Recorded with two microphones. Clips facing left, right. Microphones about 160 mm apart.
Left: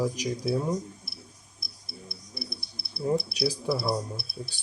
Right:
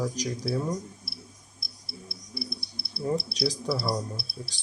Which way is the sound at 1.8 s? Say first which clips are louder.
Even; 20° left (ahead or behind).